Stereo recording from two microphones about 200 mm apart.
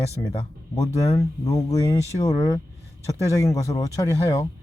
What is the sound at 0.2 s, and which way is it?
Speech, 20° left (ahead or behind).